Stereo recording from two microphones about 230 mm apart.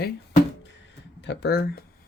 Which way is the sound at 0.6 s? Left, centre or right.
Left.